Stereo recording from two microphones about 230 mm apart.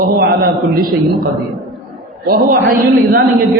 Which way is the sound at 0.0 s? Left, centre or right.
Right.